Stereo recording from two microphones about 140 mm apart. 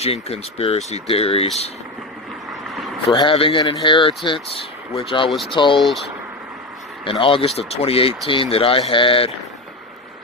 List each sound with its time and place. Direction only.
0.0 s speech: 45° left (ahead or behind)
2.5 s vehicle: centre (ahead or behind)
3.1 s speech: 40° left (ahead or behind)
5.8 s speech: centre (ahead or behind)
7.0 s speech: 40° left (ahead or behind)